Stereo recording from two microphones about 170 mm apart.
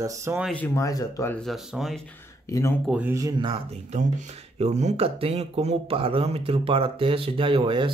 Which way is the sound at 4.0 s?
45° right (ahead or behind).